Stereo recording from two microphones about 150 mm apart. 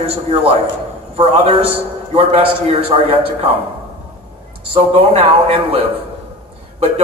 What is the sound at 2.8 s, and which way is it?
Speech, 40° right (ahead or behind).